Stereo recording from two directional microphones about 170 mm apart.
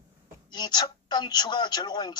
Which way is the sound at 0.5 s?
25° left (ahead or behind).